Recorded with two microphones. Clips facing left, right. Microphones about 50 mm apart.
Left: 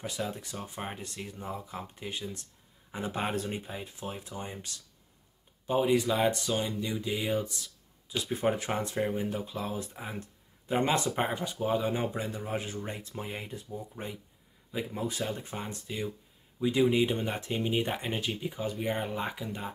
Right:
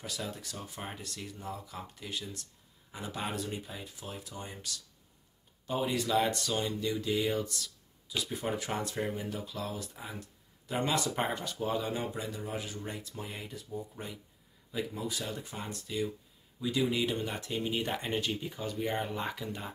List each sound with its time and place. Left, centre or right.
0.4 s speech: left
8.2 s speech: left
11.1 s speech: centre
11.9 s speech: left
15.0 s speech: left
18.0 s speech: centre